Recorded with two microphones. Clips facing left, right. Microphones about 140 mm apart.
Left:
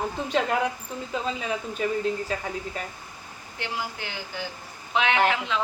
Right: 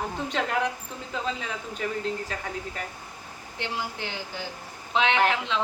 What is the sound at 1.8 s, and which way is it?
Speech, 5° left (ahead or behind).